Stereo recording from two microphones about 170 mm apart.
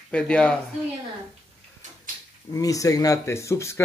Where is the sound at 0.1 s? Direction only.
5° left (ahead or behind).